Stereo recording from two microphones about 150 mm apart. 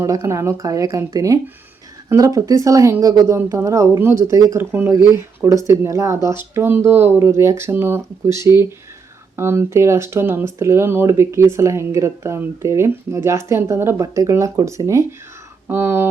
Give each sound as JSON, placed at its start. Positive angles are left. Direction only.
{"t": 0.0, "sound": "speech", "side_deg": -20}